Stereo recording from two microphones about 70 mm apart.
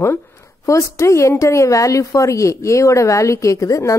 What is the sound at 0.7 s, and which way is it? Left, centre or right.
A woman's voice, left.